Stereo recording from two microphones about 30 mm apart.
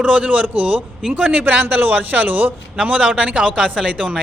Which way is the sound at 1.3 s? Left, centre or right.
Right.